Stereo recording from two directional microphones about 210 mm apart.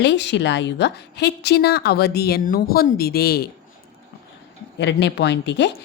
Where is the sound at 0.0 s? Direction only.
55° left (ahead or behind).